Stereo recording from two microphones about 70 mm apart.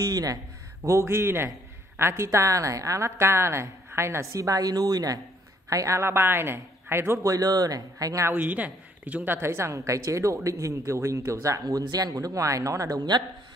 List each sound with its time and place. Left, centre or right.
0.0 s speech: right
0.8 s a woman's voice: right
4.3 s speech: right
5.7 s a woman's voice: right
7.2 s speech: right
8.4 s a woman's voice: right
11.6 s speech: right